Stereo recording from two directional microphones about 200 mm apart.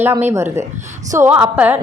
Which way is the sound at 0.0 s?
10° right (ahead or behind).